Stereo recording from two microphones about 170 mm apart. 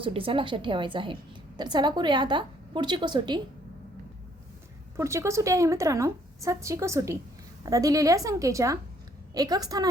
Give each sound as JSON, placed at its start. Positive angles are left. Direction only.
{"t": 0.0, "sound": "a woman's voice", "side_deg": -30}
{"t": 4.9, "sound": "a woman's voice", "side_deg": -15}